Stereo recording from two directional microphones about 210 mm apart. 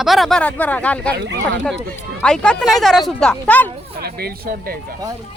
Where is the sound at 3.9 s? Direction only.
45° right (ahead or behind).